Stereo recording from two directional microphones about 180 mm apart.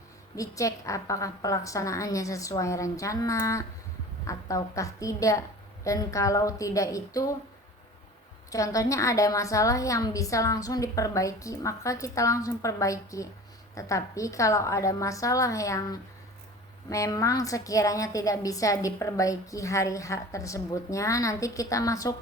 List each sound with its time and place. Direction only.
0.3 s a woman's voice: 20° left (ahead or behind)
8.4 s a woman's voice: 20° left (ahead or behind)